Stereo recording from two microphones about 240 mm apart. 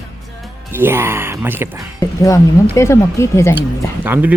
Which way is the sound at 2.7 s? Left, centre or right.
Centre.